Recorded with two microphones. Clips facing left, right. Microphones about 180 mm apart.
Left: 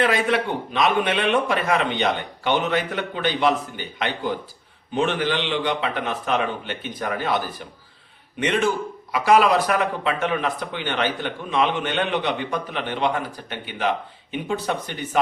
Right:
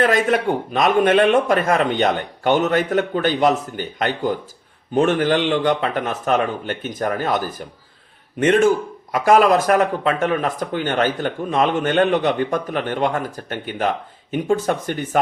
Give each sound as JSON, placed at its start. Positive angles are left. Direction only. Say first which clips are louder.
{"t": 0.0, "sound": "a man's voice", "louder": "right 4 dB", "side_deg": -45}